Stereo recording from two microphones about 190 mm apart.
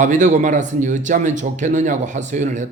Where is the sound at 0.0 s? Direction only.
40° right (ahead or behind).